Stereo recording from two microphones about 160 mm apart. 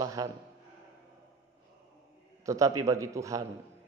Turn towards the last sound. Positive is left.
turn(degrees=-20)  # may be behind; listen again after turning